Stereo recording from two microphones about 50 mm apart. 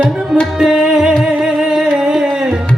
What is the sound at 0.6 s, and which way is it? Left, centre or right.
Music, centre.